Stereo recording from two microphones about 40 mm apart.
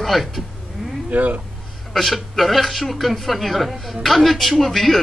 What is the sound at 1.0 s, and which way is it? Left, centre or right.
Speech, right.